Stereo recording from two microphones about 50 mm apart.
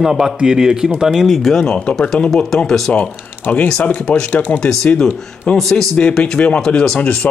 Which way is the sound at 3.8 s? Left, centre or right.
Left.